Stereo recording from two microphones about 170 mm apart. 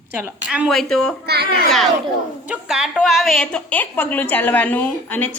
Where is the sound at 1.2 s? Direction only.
70° right (ahead or behind).